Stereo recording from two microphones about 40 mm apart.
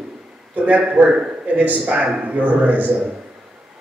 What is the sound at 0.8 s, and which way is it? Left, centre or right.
A man's voice, right.